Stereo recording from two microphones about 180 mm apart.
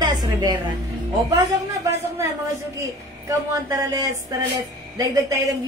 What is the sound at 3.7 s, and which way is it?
Music, 20° right (ahead or behind).